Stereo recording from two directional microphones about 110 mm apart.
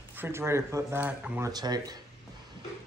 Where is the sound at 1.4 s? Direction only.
35° right (ahead or behind).